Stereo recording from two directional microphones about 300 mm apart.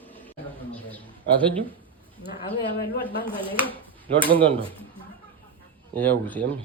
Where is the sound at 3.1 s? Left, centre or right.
Centre.